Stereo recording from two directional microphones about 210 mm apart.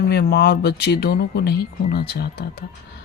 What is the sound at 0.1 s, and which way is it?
Speech, 50° left (ahead or behind).